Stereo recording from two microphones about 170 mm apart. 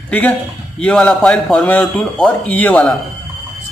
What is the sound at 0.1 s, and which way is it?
A man's voice, 10° left (ahead or behind).